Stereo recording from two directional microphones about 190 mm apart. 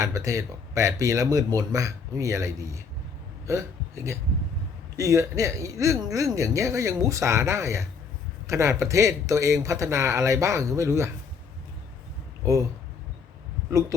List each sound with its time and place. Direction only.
0.0 s speech: 15° right (ahead or behind)